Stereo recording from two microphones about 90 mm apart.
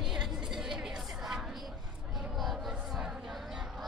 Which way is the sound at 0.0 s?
5° right (ahead or behind).